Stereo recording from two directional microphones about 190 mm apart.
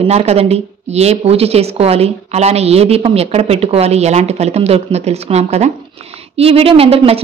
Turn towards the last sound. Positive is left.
turn(degrees=-30)  # may be behind; listen again after turning